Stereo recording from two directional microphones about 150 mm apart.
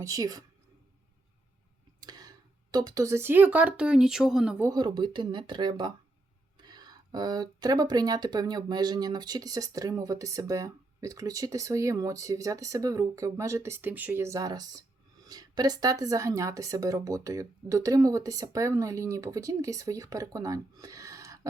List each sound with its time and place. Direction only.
0.0 s speech: 25° right (ahead or behind)
2.0 s speech: 25° right (ahead or behind); by 4.6 s 5° right (ahead or behind)
4.6 s speech: 30° right (ahead or behind)